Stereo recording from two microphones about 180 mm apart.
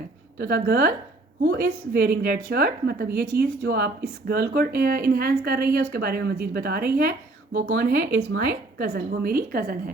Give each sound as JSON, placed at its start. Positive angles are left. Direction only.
{"t": 0.3, "sound": "a woman's voice", "side_deg": -55}